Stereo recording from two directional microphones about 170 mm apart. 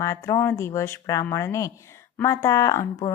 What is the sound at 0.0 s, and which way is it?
Speech, 20° left (ahead or behind).